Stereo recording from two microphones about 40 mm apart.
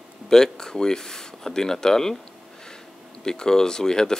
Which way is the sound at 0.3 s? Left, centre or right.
Centre.